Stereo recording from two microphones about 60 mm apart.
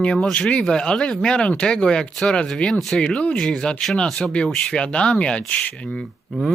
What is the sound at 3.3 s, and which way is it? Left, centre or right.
Speech, centre.